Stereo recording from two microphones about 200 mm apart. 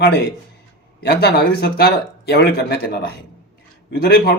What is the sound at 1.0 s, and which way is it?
Speech, 50° left (ahead or behind).